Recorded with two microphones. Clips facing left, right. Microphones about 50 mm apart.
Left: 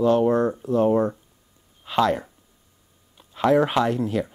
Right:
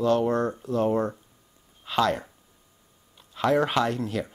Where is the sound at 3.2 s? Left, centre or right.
Centre.